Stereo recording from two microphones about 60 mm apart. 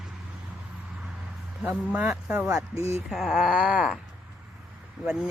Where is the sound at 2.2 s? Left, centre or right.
Centre.